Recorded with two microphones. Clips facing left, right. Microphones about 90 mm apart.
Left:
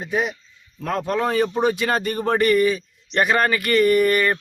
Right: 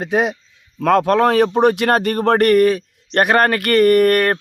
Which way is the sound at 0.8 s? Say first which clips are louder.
Right 9 dB; 85° right.